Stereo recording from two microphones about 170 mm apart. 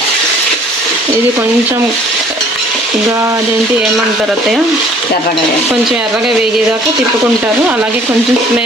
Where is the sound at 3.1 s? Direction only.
15° right (ahead or behind).